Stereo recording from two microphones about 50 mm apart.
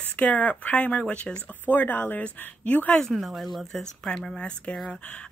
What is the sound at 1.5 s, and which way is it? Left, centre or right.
Speech, left.